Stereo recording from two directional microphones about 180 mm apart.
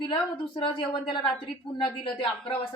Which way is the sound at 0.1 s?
25° left (ahead or behind).